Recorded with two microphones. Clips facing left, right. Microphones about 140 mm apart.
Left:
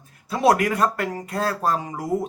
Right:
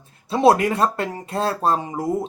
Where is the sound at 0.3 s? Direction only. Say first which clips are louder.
Right 3 dB; 25° right (ahead or behind).